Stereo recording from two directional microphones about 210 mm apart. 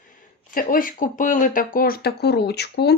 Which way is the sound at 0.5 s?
40° left (ahead or behind).